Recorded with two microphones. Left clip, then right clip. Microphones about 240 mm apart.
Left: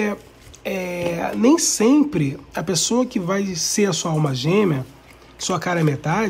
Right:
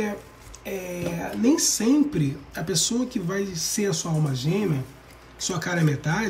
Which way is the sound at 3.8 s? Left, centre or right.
Left.